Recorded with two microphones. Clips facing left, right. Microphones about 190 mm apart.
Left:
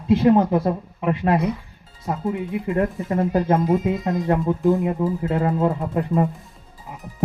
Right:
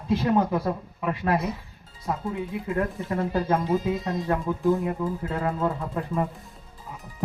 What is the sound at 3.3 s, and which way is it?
Speech, 20° left (ahead or behind).